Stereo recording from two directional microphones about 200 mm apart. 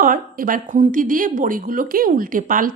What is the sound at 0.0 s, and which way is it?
Speech, 45° right (ahead or behind).